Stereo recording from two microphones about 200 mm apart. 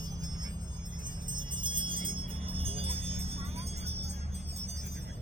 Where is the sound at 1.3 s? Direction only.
25° right (ahead or behind).